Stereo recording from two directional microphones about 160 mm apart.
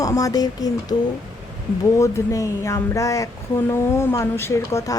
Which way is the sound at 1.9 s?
20° left (ahead or behind).